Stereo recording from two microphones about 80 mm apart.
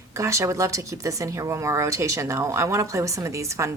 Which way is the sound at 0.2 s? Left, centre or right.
Right.